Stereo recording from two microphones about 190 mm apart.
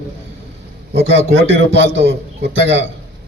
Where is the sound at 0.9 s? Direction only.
70° right (ahead or behind).